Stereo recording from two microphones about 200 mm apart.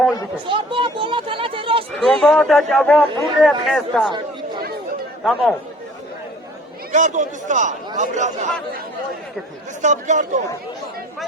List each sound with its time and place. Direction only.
0.4 s a sound: 25° right (ahead or behind)
1.9 s speech: centre (ahead or behind)
5.2 s speech: 5° left (ahead or behind)
6.9 s speech: 40° right (ahead or behind)
9.8 s speech: 35° right (ahead or behind)